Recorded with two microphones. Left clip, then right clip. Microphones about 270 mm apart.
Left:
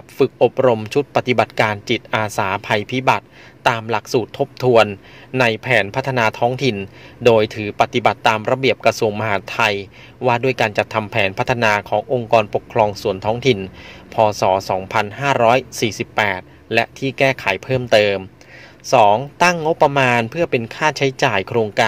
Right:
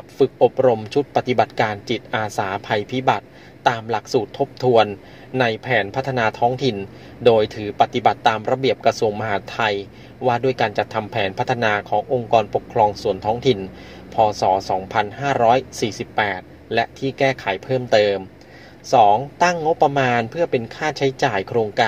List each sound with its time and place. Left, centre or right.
0.2 s speech: left